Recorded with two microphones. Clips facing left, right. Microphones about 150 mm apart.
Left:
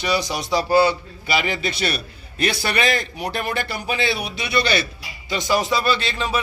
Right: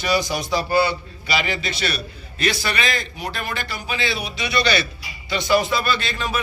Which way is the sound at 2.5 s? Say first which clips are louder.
Left 2 dB; 60° left (ahead or behind).